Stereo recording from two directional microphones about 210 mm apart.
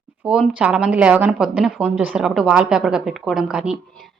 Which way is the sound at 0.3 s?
5° right (ahead or behind).